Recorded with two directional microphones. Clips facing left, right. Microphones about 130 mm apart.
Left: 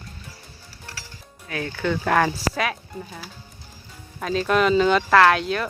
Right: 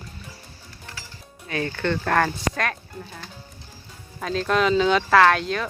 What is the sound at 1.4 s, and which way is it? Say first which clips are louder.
Speech: right 1 dB; centre (ahead or behind).